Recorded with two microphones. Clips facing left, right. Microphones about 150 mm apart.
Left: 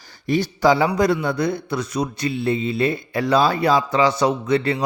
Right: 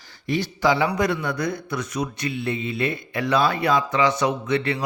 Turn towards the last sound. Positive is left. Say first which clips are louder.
# left 4 dB
turn(degrees=35)  # may be behind; listen again after turning